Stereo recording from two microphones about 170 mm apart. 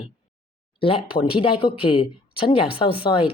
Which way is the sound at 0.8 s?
30° left (ahead or behind).